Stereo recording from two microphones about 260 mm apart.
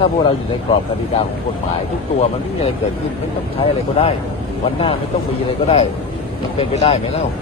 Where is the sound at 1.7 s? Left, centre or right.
Left.